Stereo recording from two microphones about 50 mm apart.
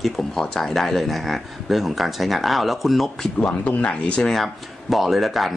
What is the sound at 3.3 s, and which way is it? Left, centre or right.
Speech, left.